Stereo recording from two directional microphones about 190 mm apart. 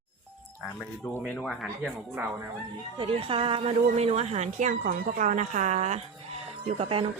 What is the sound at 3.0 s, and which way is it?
Speech, 30° right (ahead or behind).